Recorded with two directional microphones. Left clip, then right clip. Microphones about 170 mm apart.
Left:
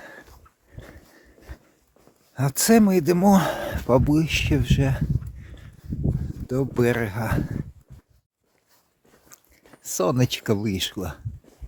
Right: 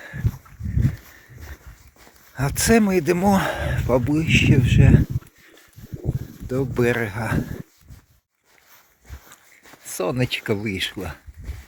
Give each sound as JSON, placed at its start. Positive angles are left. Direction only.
{"t": 2.3, "sound": "speech", "side_deg": 30}
{"t": 6.5, "sound": "speech", "side_deg": 35}
{"t": 9.8, "sound": "speech", "side_deg": 55}
{"t": 10.9, "sound": "speech", "side_deg": 40}